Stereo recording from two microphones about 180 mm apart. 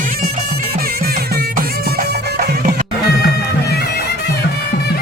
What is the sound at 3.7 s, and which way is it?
Music, 60° left (ahead or behind).